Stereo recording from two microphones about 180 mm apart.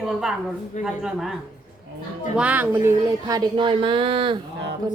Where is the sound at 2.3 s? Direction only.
10° right (ahead or behind).